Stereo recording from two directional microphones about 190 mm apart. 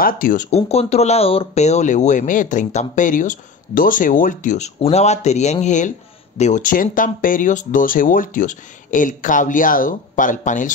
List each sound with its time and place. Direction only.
0.0 s speech: 45° left (ahead or behind)